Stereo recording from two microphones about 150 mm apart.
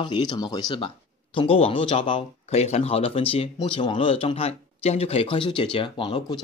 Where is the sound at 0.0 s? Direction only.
30° left (ahead or behind).